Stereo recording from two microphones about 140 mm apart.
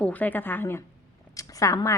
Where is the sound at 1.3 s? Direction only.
25° left (ahead or behind).